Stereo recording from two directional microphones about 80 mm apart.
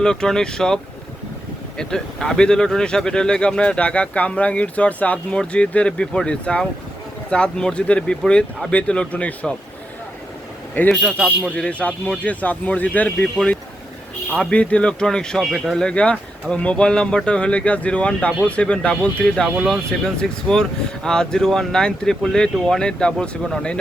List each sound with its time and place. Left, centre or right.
0.0 s speech: centre
1.8 s speech: centre
10.8 s speech: left
14.3 s speech: centre
19.5 s speech: centre
19.9 s speech: centre